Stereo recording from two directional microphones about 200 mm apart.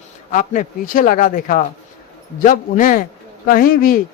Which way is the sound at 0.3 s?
40° left (ahead or behind).